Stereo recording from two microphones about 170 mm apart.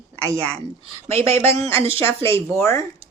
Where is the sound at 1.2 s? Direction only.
15° left (ahead or behind).